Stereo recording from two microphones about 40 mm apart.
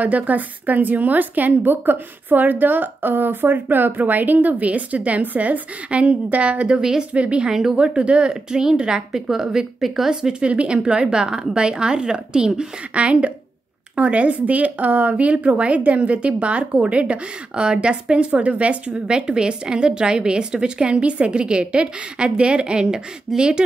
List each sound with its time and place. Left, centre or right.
0.0 s a woman's voice: right
6.8 s a woman's voice: centre
7.2 s a woman's voice: right
7.4 s a woman's voice: centre
7.7 s a woman's voice: right; by 10.3 s centre
10.4 s a woman's voice: right
19.0 s a woman's voice: right